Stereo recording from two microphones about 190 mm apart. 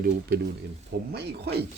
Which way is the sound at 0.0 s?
55° right (ahead or behind).